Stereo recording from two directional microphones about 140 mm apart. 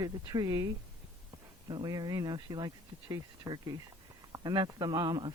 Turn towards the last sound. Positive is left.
turn(degrees=-30)  # may be behind; listen again after turning